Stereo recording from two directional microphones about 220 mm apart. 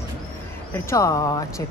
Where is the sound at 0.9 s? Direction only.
15° left (ahead or behind).